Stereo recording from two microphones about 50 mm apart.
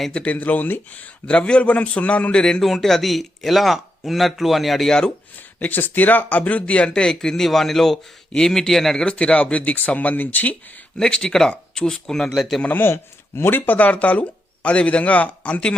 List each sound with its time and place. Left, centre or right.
0.3 s speech: left
1.3 s speech: left
2.6 s speech: centre
4.9 s speech: centre
5.5 s speech: left; by 9.0 s centre
9.0 s speech: left
10.9 s speech: centre
12.6 s speech: left
12.9 s speech: left